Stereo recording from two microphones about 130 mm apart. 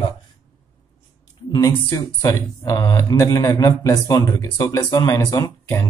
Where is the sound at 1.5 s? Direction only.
30° left (ahead or behind).